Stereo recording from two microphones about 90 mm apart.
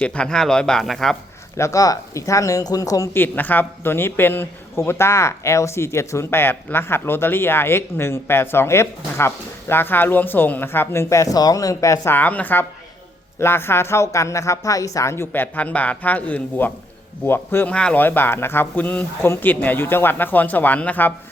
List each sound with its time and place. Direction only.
0.0 s speech: 10° left (ahead or behind)
1.5 s speech: 35° left (ahead or behind)
3.2 s speech: 20° left (ahead or behind); by 12.1 s 35° left (ahead or behind)
12.1 s speech: 20° left (ahead or behind)
17.7 s speech: 10° left (ahead or behind)
18.0 s speech: 25° left (ahead or behind)